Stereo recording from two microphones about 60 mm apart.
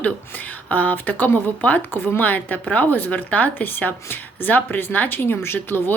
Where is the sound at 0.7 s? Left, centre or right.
Left.